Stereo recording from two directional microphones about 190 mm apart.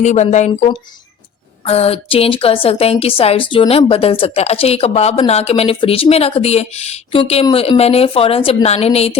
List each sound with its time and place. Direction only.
0.0 s a woman's voice: 35° left (ahead or behind)